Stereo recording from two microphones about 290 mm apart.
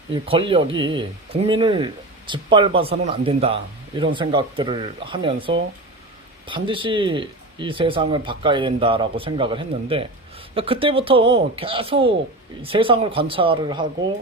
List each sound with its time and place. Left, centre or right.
0.1 s speech: centre